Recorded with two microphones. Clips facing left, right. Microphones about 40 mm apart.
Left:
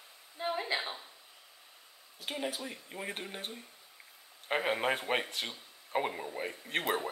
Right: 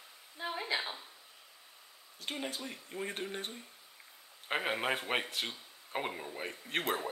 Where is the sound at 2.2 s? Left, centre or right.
Centre.